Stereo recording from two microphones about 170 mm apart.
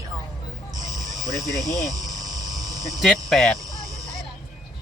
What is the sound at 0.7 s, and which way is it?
Cricket, 20° right (ahead or behind).